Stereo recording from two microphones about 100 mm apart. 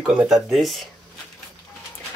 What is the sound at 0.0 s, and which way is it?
Speech, 5° right (ahead or behind).